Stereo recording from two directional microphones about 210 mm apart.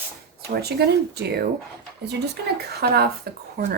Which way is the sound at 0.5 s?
50° right (ahead or behind).